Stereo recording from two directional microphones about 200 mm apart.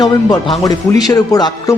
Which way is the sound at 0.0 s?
20° left (ahead or behind).